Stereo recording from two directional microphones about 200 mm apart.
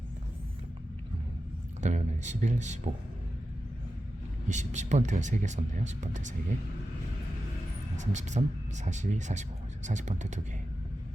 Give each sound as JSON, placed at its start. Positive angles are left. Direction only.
{"t": 1.8, "sound": "speech", "side_deg": -35}
{"t": 4.4, "sound": "speech", "side_deg": -35}
{"t": 7.9, "sound": "speech", "side_deg": -35}